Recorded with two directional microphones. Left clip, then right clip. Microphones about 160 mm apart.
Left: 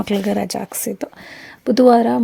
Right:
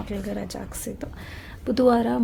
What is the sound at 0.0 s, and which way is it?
A woman's voice, 60° left (ahead or behind).